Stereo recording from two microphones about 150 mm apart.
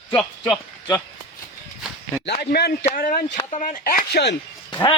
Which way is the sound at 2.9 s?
65° left (ahead or behind).